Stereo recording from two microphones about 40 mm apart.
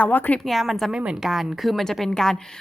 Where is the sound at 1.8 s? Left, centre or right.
Centre.